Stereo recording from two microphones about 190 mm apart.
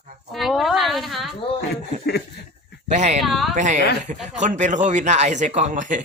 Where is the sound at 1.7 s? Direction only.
60° left (ahead or behind).